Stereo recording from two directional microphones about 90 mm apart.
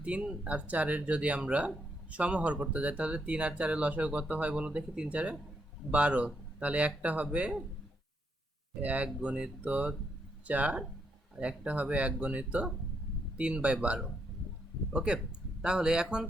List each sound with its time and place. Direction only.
0.0 s speech: 10° right (ahead or behind)
8.8 s speech: 15° right (ahead or behind)